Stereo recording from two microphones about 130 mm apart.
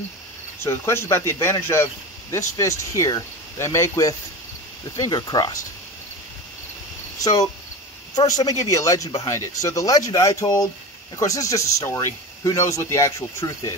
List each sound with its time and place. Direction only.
0.6 s speech: 20° left (ahead or behind)
7.2 s speech: 30° left (ahead or behind)